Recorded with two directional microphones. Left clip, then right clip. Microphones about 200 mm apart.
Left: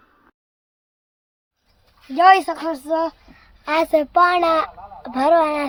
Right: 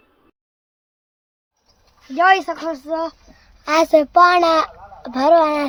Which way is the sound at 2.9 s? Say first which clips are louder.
Left 3 dB; 20° left (ahead or behind).